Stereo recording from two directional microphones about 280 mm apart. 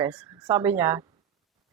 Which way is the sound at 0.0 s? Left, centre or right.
Centre.